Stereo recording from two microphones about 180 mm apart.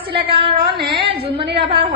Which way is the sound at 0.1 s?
30° right (ahead or behind).